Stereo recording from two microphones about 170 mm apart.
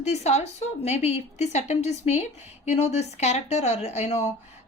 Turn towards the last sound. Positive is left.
turn(degrees=40)  # may be behind; listen again after turning